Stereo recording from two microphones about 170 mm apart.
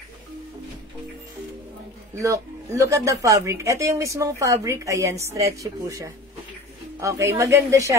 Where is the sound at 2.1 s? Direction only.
20° right (ahead or behind).